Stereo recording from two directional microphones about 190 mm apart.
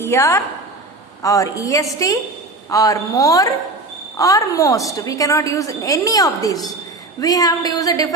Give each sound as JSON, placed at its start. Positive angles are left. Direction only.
{"t": 0.0, "sound": "a woman's voice", "side_deg": 15}